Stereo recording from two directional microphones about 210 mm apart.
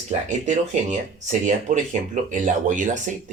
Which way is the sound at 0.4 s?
35° right (ahead or behind).